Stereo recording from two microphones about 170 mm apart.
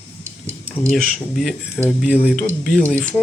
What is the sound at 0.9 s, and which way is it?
Speech, centre (ahead or behind).